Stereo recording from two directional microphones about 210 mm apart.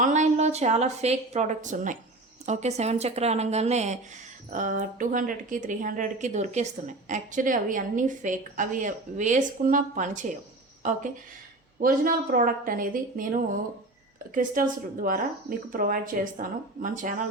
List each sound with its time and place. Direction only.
0.0 s a woman's voice: 35° right (ahead or behind)
11.8 s speech: 40° right (ahead or behind)